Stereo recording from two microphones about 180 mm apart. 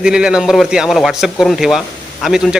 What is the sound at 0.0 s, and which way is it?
Speech, 5° right (ahead or behind).